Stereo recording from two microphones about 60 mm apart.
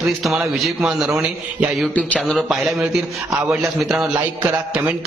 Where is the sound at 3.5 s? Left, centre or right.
Centre.